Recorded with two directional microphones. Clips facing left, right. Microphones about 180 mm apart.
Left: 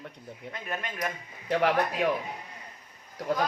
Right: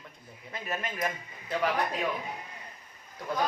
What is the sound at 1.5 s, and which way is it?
Speech, 65° left (ahead or behind).